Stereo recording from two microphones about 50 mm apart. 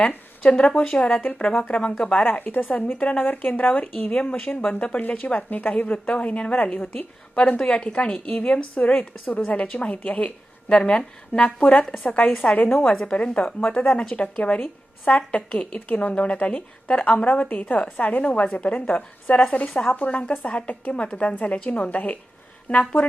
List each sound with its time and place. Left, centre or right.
0.4 s a woman's voice: left
1.8 s a woman's voice: centre; by 7.0 s left
7.4 s a woman's voice: left
19.4 s a woman's voice: centre
19.9 s a woman's voice: left